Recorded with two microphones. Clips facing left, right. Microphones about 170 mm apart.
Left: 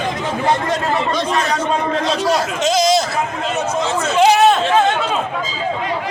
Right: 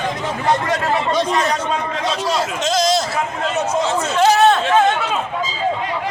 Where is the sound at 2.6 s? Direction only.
10° left (ahead or behind).